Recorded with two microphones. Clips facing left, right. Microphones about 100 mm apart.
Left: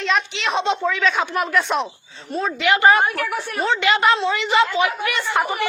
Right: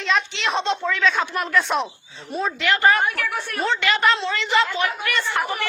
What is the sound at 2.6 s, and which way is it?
Speech, 20° left (ahead or behind).